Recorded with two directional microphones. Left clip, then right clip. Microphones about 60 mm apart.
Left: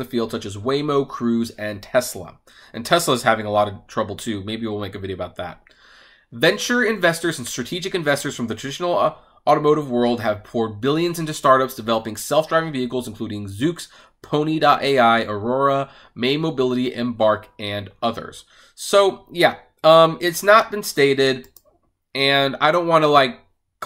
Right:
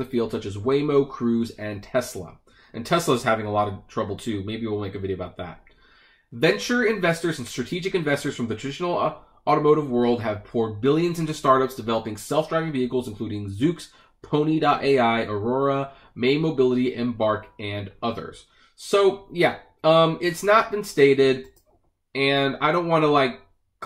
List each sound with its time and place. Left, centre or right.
0.0 s speech: left